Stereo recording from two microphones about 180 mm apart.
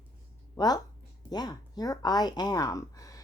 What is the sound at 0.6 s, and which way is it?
Speech, 20° left (ahead or behind).